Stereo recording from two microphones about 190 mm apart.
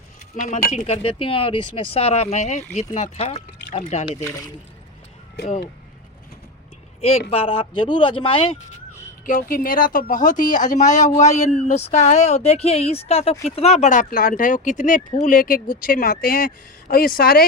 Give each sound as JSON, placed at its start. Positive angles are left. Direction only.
{"t": 0.4, "sound": "speech", "side_deg": 40}
{"t": 4.2, "sound": "speech", "side_deg": 15}
{"t": 7.0, "sound": "speech", "side_deg": 30}
{"t": 9.2, "sound": "speech", "side_deg": 45}